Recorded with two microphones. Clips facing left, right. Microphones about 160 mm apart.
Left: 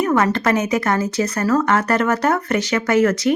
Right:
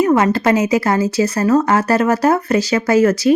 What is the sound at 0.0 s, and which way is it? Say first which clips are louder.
Speech: right 4 dB; 25° right (ahead or behind).